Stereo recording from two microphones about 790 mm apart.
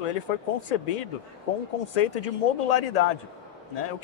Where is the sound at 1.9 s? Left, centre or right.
Left.